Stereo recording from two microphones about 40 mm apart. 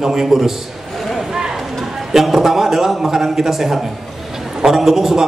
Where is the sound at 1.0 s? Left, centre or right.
Centre.